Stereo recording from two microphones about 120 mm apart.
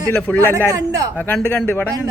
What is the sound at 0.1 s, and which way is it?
Speech, 15° left (ahead or behind).